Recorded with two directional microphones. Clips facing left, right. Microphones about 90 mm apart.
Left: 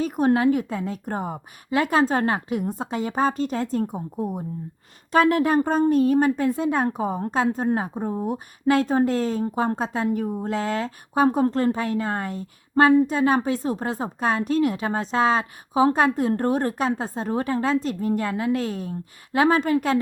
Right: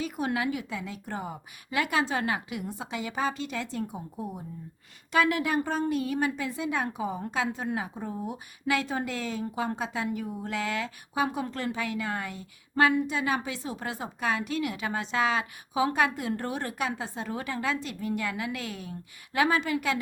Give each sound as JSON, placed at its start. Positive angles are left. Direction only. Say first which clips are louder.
{"t": 0.0, "sound": "speech", "louder": "left 10 dB", "side_deg": 40}